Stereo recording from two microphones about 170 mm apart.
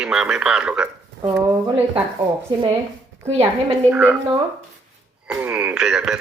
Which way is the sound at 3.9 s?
10° right (ahead or behind).